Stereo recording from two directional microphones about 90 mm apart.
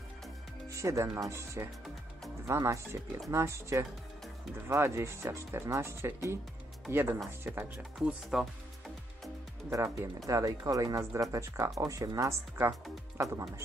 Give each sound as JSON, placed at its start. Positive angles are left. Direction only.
{"t": 0.7, "sound": "speech", "side_deg": -35}
{"t": 8.0, "sound": "speech", "side_deg": -5}
{"t": 9.9, "sound": "speech", "side_deg": -40}